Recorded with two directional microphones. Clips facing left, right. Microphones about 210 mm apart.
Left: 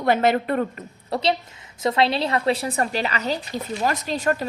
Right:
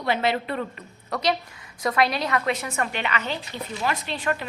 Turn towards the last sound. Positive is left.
turn(degrees=40)  # may be behind; listen again after turning